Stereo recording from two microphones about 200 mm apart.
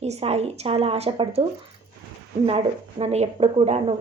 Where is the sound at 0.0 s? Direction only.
30° right (ahead or behind).